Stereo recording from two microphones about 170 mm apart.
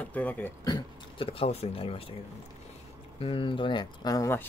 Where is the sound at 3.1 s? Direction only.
30° left (ahead or behind).